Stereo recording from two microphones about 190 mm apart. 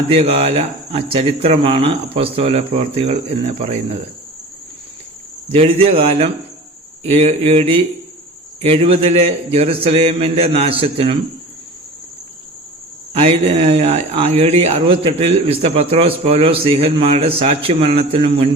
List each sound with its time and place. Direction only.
0.1 s speech: 30° right (ahead or behind)
5.5 s speech: 30° right (ahead or behind)
13.1 s speech: 30° right (ahead or behind)